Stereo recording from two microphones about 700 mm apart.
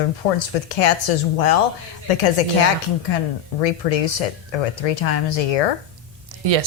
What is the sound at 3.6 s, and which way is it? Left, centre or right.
A woman's voice, left.